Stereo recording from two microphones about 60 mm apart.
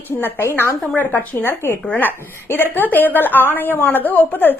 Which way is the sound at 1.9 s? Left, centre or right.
Left.